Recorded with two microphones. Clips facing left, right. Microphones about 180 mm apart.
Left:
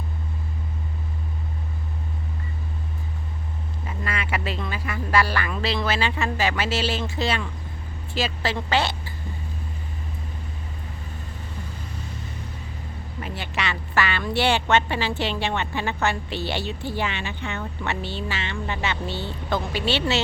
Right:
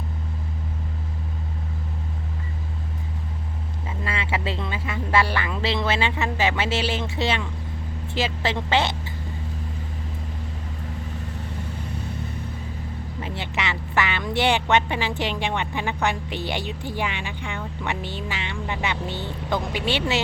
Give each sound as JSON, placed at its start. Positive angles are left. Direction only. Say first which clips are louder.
{"t": 4.0, "sound": "speech", "louder": "right 1 dB", "side_deg": -25}
{"t": 13.1, "sound": "a woman's voice", "louder": "even", "side_deg": -20}